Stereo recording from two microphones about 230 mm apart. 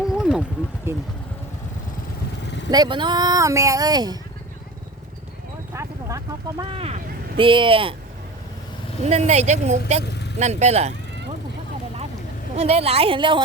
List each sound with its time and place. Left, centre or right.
0.0 s a sound: centre
2.6 s speech: centre
5.7 s speech: centre
9.0 s speech: right
12.5 s speech: right